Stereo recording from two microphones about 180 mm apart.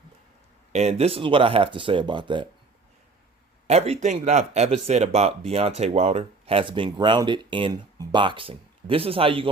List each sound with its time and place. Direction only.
0.7 s speech: 35° right (ahead or behind)
3.7 s speech: 35° right (ahead or behind)